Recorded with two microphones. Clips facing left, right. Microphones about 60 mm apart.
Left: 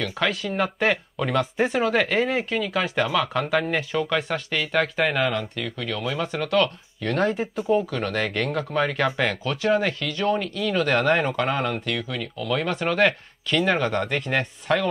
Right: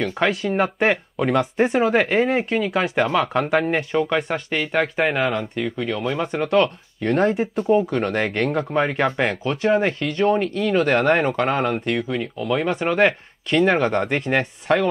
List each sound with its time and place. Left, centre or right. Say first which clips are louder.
0.0 s speech: right 4 dB; right
7.2 s speech: right 4 dB; centre
7.8 s speech: right 4 dB; right